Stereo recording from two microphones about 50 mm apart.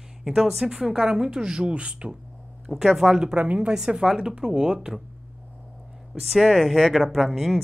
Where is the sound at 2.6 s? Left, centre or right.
Centre.